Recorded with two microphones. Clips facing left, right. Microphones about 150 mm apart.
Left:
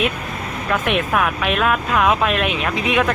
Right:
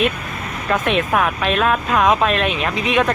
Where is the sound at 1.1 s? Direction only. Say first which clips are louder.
Right 1 dB; centre (ahead or behind).